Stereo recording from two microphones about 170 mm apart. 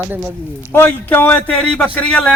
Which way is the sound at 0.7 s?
10° left (ahead or behind).